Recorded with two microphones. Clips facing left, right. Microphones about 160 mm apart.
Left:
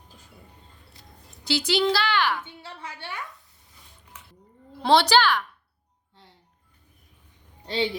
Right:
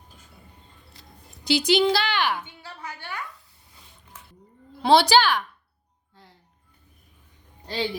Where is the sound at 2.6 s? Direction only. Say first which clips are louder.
Even; 25° left (ahead or behind).